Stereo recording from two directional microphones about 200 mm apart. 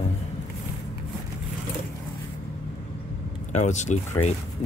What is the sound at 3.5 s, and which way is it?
Speech, 35° left (ahead or behind).